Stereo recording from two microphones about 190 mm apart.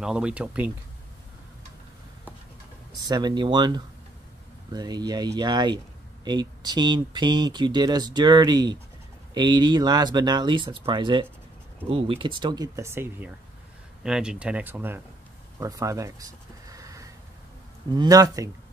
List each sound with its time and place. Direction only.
0.0 s speech: 5° right (ahead or behind)
3.0 s speech: 20° right (ahead or behind)
15.6 s a sound: 15° right (ahead or behind)
17.9 s speech: 20° right (ahead or behind)